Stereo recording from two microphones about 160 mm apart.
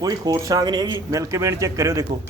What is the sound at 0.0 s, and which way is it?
A man's voice, 25° right (ahead or behind).